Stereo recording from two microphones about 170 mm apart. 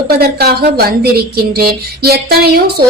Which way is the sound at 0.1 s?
65° right (ahead or behind).